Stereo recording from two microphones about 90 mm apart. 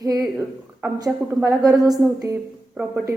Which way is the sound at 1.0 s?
45° right (ahead or behind).